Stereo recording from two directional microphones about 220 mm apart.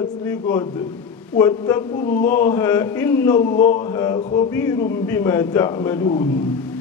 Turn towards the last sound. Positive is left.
turn(degrees=10)  # may be behind; listen again after turning